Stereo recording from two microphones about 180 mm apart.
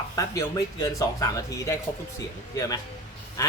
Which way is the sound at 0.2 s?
20° left (ahead or behind).